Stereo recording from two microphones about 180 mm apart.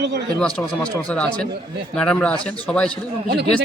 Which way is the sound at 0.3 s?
5° left (ahead or behind).